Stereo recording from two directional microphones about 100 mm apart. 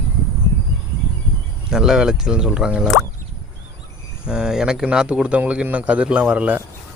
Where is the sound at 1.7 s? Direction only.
5° right (ahead or behind).